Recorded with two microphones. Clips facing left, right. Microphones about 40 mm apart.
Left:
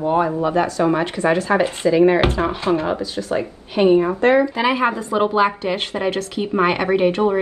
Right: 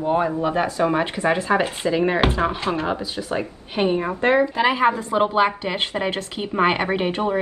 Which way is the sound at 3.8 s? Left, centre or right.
Centre.